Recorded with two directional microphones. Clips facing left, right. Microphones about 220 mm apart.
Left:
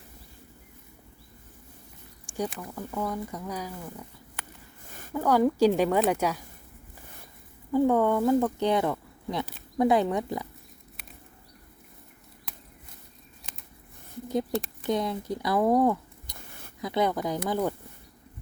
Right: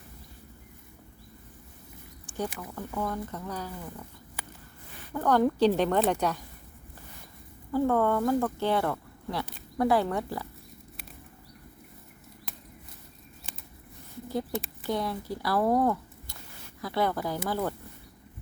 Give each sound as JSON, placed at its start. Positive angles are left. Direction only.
{"t": 2.2, "sound": "a sound", "side_deg": 10}
{"t": 2.6, "sound": "speech", "side_deg": 0}
{"t": 4.9, "sound": "a sound", "side_deg": 45}
{"t": 5.1, "sound": "speech", "side_deg": 5}
{"t": 7.7, "sound": "speech", "side_deg": 15}
{"t": 14.8, "sound": "speech", "side_deg": 20}